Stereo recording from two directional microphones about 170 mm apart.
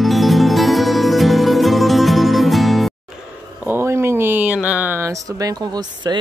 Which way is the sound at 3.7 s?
15° right (ahead or behind).